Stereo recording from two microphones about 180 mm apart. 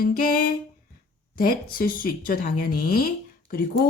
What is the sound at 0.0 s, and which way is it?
A woman's voice, 55° left (ahead or behind).